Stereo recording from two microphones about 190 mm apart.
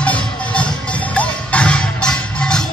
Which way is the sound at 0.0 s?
5° left (ahead or behind).